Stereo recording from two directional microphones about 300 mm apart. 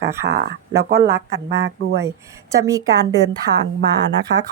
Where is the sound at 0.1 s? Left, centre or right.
Centre.